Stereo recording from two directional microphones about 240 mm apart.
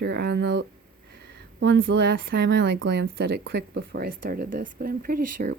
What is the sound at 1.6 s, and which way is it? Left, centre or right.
Speech, right.